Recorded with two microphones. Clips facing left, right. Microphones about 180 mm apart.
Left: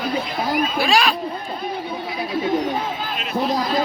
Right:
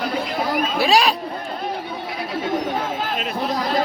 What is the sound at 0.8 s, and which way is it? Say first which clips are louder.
Speech: right 3 dB; 35° right (ahead or behind).